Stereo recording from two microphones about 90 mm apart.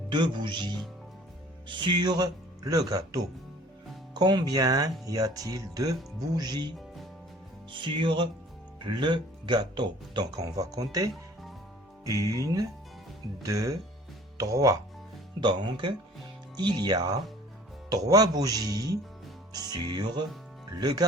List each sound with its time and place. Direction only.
0.1 s a man's voice: 60° right (ahead or behind); by 3.2 s 40° right (ahead or behind)
4.1 s speech: 55° right (ahead or behind)
6.7 s music: centre (ahead or behind)
7.7 s a man's voice: 60° right (ahead or behind); by 14.8 s 40° right (ahead or behind)
15.4 s a man's voice: 60° right (ahead or behind)